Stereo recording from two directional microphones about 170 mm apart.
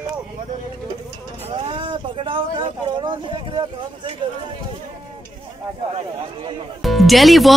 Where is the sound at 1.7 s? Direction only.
30° right (ahead or behind).